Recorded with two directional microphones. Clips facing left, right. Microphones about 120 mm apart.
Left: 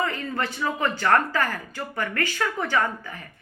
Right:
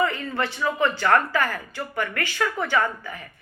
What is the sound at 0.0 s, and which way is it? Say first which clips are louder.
A woman's voice: right 3 dB; 40° left (ahead or behind).